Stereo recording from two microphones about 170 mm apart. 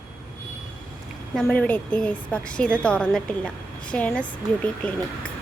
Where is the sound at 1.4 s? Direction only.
5° left (ahead or behind).